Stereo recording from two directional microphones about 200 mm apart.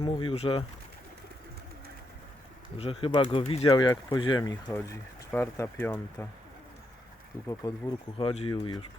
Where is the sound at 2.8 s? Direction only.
25° left (ahead or behind); by 6.3 s 10° left (ahead or behind).